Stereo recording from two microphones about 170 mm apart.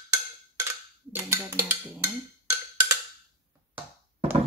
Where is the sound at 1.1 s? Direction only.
15° right (ahead or behind).